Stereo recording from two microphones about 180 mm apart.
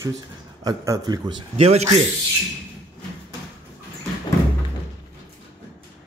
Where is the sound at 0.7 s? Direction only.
20° right (ahead or behind).